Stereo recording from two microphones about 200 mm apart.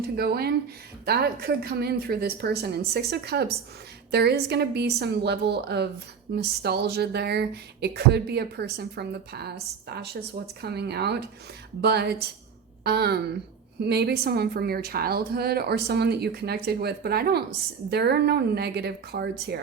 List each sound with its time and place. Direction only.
0.2 s a woman's voice: 50° right (ahead or behind)